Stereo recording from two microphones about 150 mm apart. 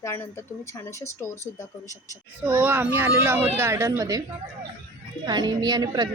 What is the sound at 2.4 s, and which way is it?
A woman's voice, 15° right (ahead or behind).